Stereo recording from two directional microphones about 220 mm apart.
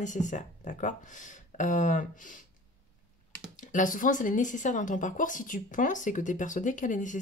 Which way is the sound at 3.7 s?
35° left (ahead or behind).